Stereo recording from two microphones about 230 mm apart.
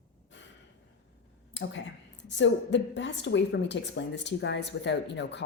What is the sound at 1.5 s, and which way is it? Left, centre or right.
A woman's voice, left.